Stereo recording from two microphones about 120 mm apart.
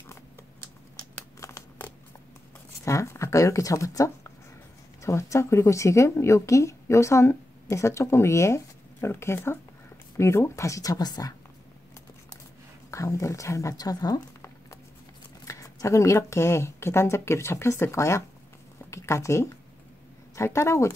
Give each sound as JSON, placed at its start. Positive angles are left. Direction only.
{"t": 1.4, "sound": "a sound", "side_deg": 25}
{"t": 2.8, "sound": "a woman's voice", "side_deg": 25}
{"t": 12.9, "sound": "a woman's voice", "side_deg": 25}